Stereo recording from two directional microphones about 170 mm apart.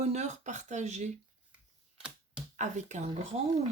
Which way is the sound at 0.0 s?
40° right (ahead or behind).